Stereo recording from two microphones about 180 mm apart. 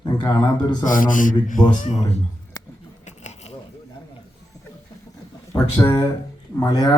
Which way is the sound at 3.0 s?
40° left (ahead or behind).